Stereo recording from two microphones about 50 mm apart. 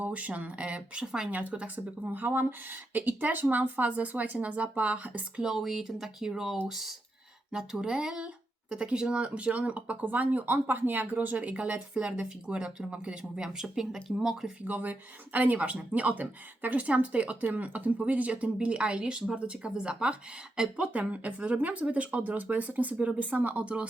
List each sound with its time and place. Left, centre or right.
0.0 s speech: right
1.3 s speech: right
5.4 s speech: centre
14.7 s speech: right